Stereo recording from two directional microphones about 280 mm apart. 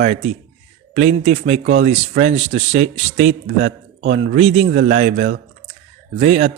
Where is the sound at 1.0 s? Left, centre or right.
Right.